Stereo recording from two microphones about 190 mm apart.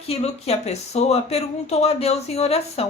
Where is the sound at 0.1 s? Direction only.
35° left (ahead or behind).